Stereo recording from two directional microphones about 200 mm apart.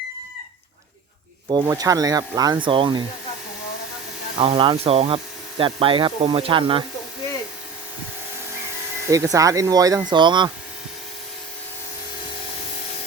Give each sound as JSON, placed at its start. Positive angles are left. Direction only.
{"t": 1.5, "sound": "speech", "side_deg": -20}
{"t": 4.4, "sound": "speech", "side_deg": -25}
{"t": 9.0, "sound": "speech", "side_deg": -15}